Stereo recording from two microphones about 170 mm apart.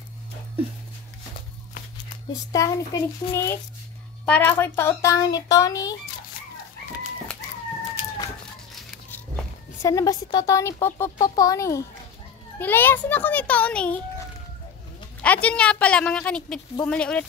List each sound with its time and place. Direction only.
2.5 s speech: 20° left (ahead or behind)
9.1 s speech: 15° left (ahead or behind)
15.2 s speech: 10° left (ahead or behind)